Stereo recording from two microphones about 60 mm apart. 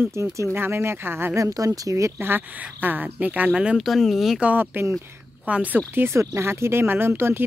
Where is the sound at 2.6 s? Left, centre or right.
Right.